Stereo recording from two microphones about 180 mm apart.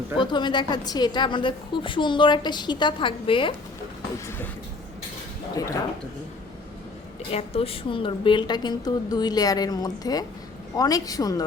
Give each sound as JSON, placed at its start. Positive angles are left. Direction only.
{"t": 0.2, "sound": "a woman's voice", "side_deg": 25}
{"t": 7.3, "sound": "a woman's voice", "side_deg": 35}